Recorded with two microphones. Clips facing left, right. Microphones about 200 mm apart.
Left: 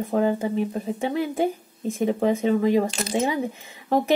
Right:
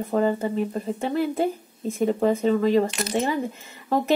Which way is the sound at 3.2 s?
15° left (ahead or behind).